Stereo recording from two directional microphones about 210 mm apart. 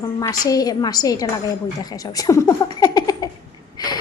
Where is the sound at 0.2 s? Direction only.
15° left (ahead or behind).